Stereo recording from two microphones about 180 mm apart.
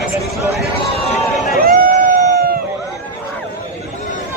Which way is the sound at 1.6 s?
50° right (ahead or behind).